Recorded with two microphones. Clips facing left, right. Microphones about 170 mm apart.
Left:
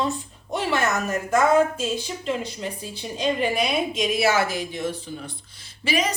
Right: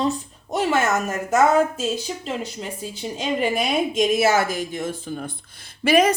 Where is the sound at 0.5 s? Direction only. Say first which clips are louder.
Right 3 dB; 50° right (ahead or behind).